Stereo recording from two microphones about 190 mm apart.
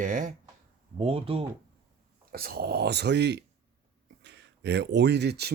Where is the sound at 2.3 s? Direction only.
55° right (ahead or behind).